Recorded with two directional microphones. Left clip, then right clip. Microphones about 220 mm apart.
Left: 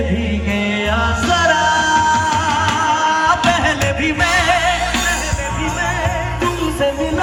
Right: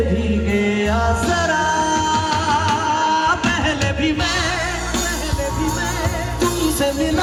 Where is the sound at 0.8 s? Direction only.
25° right (ahead or behind).